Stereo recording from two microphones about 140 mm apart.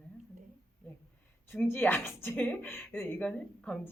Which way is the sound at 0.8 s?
10° left (ahead or behind).